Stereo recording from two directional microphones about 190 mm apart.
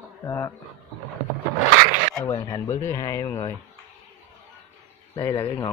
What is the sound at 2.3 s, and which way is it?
Speech, 20° left (ahead or behind).